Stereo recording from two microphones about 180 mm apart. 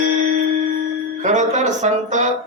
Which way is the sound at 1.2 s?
40° right (ahead or behind).